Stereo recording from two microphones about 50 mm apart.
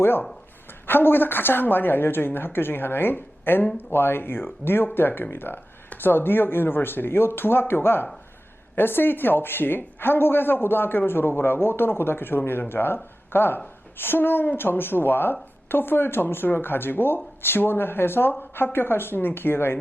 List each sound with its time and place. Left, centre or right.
0.7 s speech: left